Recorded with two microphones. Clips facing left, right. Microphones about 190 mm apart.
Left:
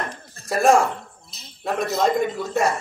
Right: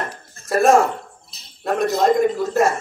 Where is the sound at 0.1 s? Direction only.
Centre (ahead or behind).